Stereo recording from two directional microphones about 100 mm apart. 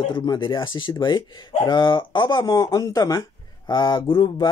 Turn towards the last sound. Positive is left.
turn(degrees=50)  # may be behind; listen again after turning